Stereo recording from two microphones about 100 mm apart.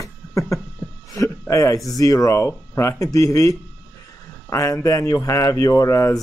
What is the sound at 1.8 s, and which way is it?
Speech, 35° left (ahead or behind).